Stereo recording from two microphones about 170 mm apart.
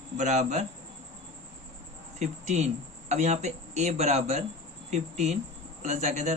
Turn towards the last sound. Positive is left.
turn(degrees=-40)  # may be behind; listen again after turning